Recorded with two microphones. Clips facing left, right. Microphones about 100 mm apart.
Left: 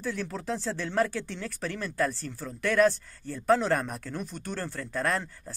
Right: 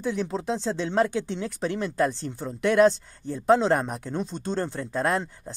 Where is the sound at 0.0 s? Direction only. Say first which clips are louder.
Right 5 dB; 20° right (ahead or behind).